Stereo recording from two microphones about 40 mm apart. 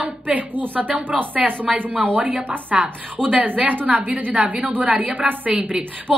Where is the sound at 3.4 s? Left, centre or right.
Right.